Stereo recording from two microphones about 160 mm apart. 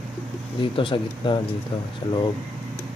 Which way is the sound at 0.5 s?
30° left (ahead or behind).